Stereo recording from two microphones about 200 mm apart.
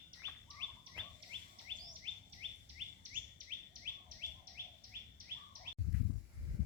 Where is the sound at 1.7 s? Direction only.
25° right (ahead or behind).